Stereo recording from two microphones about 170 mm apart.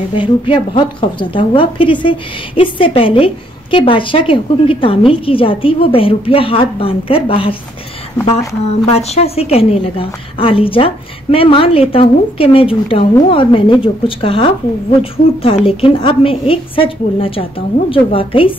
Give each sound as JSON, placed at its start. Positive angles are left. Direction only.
{"t": 0.2, "sound": "a woman's voice", "side_deg": 30}
{"t": 8.6, "sound": "a woman's voice", "side_deg": 40}